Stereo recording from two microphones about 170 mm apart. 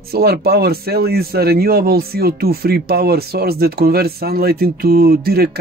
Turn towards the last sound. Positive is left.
turn(degrees=-65)  # may be behind; listen again after turning